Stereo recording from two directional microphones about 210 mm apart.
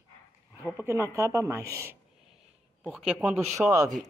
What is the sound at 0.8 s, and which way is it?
Speech, 15° right (ahead or behind).